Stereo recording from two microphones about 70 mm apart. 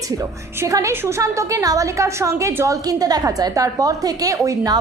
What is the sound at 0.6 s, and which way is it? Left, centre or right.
A woman's voice, right.